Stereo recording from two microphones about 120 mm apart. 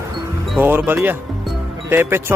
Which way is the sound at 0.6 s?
15° right (ahead or behind).